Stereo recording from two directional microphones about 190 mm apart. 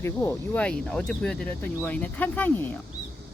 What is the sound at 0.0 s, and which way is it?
Speech, 15° left (ahead or behind).